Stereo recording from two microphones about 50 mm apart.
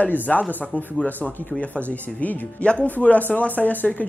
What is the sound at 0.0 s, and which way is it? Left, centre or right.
Speech, left.